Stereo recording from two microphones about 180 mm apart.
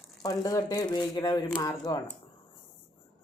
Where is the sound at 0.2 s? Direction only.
20° left (ahead or behind).